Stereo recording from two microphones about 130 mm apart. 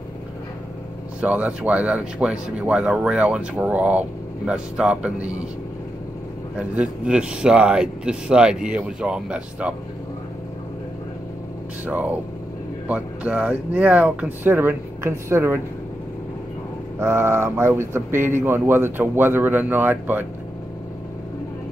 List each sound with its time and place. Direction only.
1.2 s speech: 10° right (ahead or behind)
6.7 s speech: 10° right (ahead or behind)
11.8 s speech: 15° right (ahead or behind)
17.0 s speech: 20° right (ahead or behind)